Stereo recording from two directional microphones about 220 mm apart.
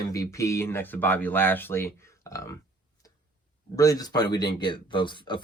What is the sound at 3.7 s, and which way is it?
Speech, 15° left (ahead or behind).